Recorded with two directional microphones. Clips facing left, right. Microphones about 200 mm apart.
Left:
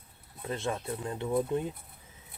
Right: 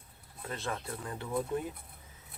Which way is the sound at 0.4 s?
25° left (ahead or behind).